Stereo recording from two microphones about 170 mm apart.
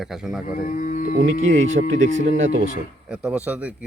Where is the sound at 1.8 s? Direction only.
50° right (ahead or behind).